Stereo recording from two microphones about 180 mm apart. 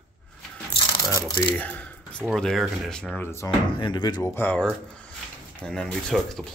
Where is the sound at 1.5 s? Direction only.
10° left (ahead or behind).